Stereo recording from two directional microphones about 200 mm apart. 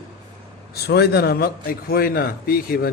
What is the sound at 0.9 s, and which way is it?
Speech, 55° left (ahead or behind).